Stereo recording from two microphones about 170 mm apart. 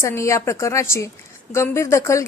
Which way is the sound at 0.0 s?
15° left (ahead or behind).